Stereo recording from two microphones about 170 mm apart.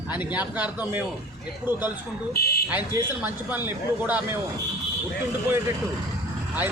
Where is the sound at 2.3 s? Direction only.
65° left (ahead or behind).